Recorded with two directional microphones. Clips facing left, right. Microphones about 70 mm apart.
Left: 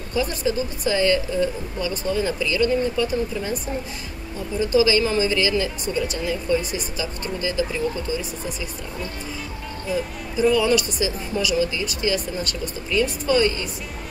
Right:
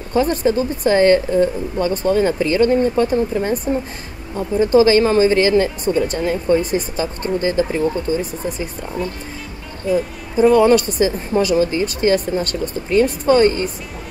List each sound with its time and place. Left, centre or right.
0.1 s a woman's voice: right
9.9 s a woman's voice: right